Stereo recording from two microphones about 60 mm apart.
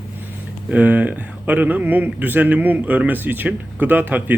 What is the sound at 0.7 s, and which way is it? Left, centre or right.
Speech, right.